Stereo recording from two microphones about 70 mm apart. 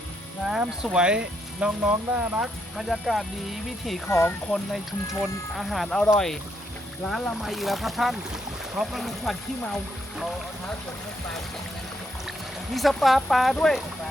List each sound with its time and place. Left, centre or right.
0.4 s speech: centre
2.7 s speech: centre
4.1 s speech: left
4.5 s speech: centre
7.4 s speech: centre
12.7 s speech: centre